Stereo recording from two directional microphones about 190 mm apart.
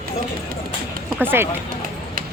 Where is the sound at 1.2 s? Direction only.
10° right (ahead or behind).